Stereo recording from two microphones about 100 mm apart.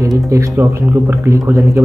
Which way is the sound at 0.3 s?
30° right (ahead or behind).